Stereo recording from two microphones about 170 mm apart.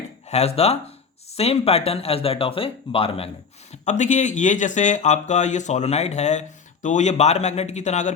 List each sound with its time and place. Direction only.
0.3 s speech: 40° left (ahead or behind)
3.7 s speech: 45° left (ahead or behind)